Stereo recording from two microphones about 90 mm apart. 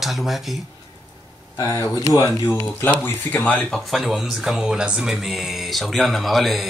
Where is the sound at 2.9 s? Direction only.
20° left (ahead or behind).